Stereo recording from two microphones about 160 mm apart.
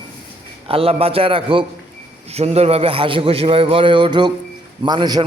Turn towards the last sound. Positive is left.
turn(degrees=-25)  # may be behind; listen again after turning